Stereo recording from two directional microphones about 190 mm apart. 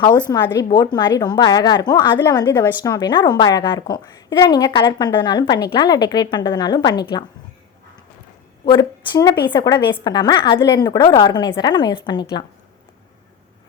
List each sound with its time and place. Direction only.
0.0 s a woman's voice: 25° left (ahead or behind)
8.6 s a woman's voice: 20° left (ahead or behind)